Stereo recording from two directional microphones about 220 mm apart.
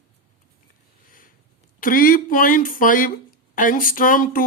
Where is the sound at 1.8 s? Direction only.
40° left (ahead or behind).